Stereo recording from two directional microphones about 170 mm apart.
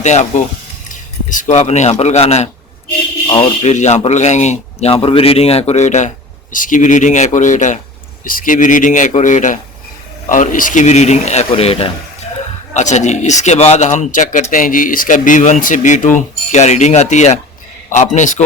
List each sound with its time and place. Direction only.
0.0 s speech: 45° left (ahead or behind)